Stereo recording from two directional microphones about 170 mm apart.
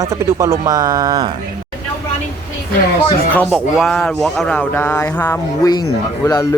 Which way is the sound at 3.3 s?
10° left (ahead or behind).